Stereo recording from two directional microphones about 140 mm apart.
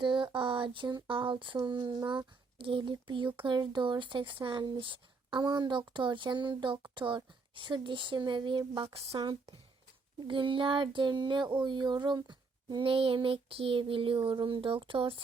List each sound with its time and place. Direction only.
0.0 s speech: 35° right (ahead or behind)